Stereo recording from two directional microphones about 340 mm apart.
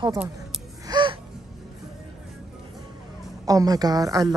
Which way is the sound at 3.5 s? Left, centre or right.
Centre.